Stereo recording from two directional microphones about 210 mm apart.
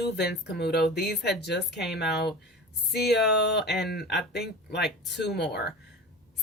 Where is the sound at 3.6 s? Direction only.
50° left (ahead or behind).